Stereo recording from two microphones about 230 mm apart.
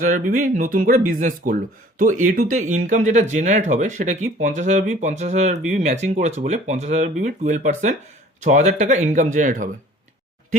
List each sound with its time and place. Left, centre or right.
0.0 s speech: right